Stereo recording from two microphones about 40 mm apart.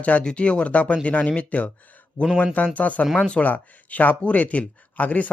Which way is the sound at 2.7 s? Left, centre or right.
Left.